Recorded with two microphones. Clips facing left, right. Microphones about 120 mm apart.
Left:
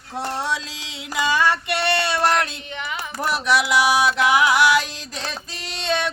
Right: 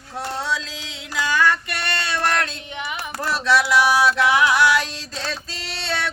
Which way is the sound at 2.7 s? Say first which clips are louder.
Even; 15° right (ahead or behind).